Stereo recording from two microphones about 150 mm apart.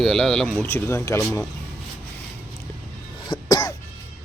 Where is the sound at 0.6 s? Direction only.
15° left (ahead or behind).